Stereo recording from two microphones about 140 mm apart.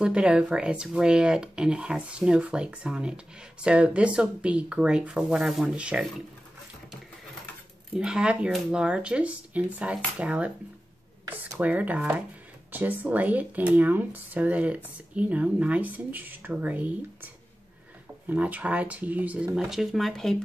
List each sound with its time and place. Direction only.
0.0 s speech: 5° right (ahead or behind)
7.9 s speech: 5° right (ahead or behind)
11.5 s speech: 10° right (ahead or behind)